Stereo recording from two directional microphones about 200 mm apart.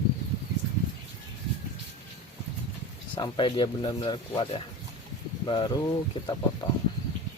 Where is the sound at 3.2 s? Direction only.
25° left (ahead or behind).